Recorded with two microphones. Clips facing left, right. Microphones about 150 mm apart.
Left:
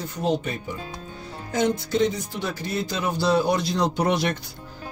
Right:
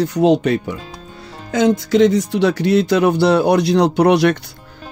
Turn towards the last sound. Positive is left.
turn(degrees=-70)  # may be behind; listen again after turning